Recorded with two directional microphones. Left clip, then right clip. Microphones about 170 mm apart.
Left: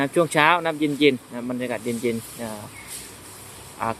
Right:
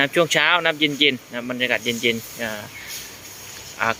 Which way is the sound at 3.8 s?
5° left (ahead or behind).